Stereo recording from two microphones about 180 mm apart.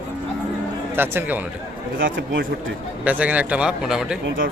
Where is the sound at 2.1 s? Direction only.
90° right.